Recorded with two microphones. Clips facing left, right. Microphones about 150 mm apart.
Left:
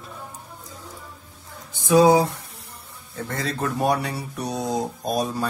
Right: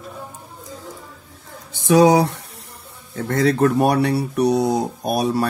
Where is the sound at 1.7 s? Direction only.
75° right (ahead or behind).